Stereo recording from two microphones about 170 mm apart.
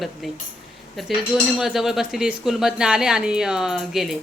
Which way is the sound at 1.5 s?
Centre (ahead or behind).